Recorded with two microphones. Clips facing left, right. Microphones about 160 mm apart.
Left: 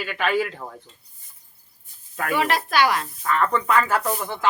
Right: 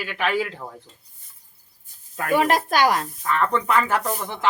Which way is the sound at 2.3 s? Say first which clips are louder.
Right 3 dB; 45° right (ahead or behind).